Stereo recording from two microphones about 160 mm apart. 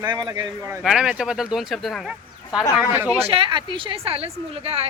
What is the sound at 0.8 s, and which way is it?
Speech, 5° right (ahead or behind).